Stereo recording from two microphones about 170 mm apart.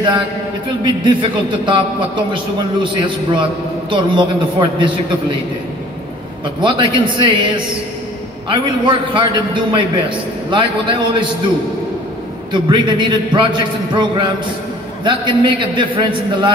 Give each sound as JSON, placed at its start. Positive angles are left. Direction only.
{"t": 0.8, "sound": "a man's voice", "side_deg": -30}
{"t": 6.6, "sound": "a man's voice", "side_deg": -30}
{"t": 8.5, "sound": "a man's voice", "side_deg": -30}
{"t": 12.5, "sound": "a man's voice", "side_deg": -25}